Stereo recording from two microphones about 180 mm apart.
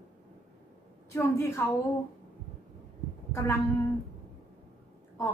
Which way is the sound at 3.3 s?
15° left (ahead or behind).